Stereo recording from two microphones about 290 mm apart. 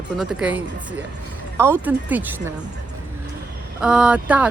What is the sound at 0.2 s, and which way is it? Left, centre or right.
Speech, centre.